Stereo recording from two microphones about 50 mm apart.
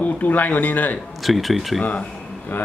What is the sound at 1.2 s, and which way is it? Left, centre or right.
Speech, centre.